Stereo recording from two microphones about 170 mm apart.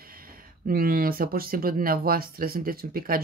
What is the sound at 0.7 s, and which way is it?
Speech, 60° right (ahead or behind).